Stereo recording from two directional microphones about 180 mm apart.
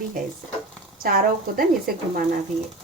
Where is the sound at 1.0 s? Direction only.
55° right (ahead or behind).